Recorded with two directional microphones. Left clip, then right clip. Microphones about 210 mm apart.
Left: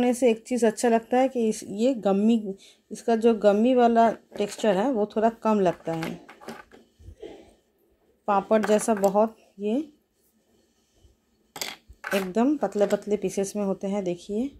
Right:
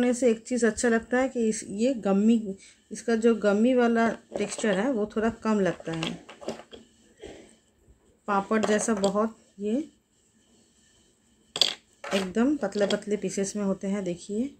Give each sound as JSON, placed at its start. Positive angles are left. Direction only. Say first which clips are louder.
{"t": 0.0, "sound": "speech", "louder": "left 2 dB", "side_deg": 20}
{"t": 8.3, "sound": "speech", "louder": "left 4 dB", "side_deg": 25}
{"t": 12.3, "sound": "speech", "louder": "left 4 dB", "side_deg": 25}